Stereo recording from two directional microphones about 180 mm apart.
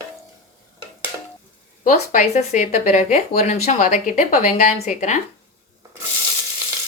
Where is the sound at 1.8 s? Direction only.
45° left (ahead or behind).